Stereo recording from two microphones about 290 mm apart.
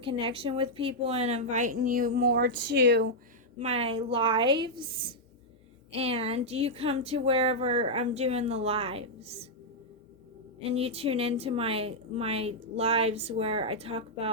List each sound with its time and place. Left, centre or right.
0.0 s a woman's voice: centre; by 3.1 s right
3.6 s a woman's voice: right
10.6 s a woman's voice: right